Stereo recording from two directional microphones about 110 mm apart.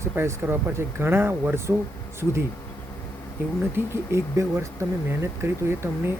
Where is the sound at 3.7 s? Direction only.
25° right (ahead or behind).